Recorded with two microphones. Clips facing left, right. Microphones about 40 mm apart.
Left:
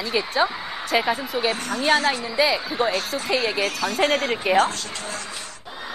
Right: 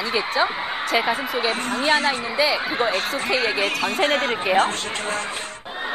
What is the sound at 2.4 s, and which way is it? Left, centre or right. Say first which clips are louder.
Speech: left 1 dB; centre.